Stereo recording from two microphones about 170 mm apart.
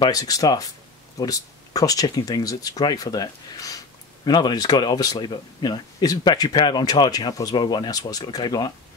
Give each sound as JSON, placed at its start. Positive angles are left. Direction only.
{"t": 0.0, "sound": "speech", "side_deg": 20}